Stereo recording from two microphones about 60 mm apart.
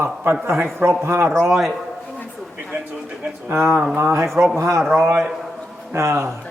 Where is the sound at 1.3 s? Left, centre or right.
Centre.